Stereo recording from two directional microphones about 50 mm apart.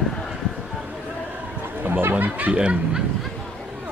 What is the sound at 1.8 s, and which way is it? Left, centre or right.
Chatter, right.